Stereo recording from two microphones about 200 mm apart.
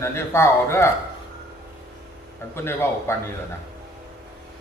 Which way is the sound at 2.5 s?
10° left (ahead or behind).